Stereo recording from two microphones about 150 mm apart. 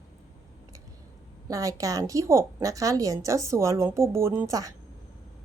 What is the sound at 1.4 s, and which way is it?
A woman's voice, 25° right (ahead or behind).